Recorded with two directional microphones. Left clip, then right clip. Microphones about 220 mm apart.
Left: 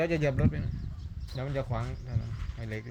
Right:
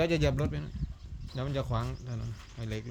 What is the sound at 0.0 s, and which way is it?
Speech, 25° right (ahead or behind).